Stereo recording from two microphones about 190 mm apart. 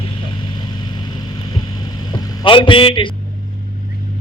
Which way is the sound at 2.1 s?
20° left (ahead or behind).